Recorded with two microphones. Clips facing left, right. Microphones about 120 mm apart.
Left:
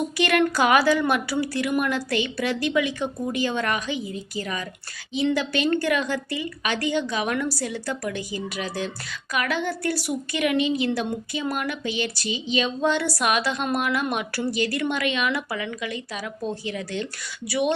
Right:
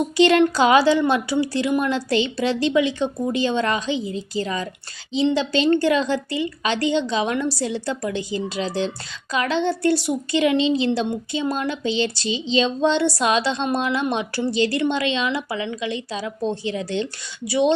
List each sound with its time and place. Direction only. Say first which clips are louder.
0.2 s a woman's voice: right 6 dB; 25° right (ahead or behind)